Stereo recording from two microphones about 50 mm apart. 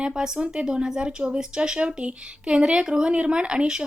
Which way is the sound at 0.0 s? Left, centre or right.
Centre.